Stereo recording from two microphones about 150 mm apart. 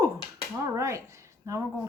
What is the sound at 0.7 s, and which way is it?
Speech, 20° right (ahead or behind).